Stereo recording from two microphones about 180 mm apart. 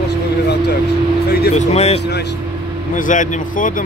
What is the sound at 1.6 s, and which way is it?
Speech, 40° left (ahead or behind).